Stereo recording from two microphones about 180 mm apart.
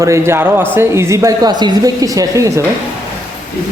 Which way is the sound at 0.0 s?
15° right (ahead or behind).